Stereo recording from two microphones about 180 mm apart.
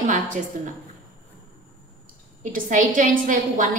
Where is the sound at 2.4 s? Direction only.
45° right (ahead or behind).